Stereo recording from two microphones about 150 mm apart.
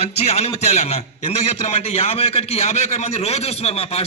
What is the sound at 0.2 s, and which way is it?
A man's voice, 45° left (ahead or behind).